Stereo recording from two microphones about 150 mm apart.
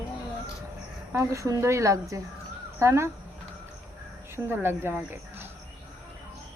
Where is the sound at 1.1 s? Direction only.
20° right (ahead or behind).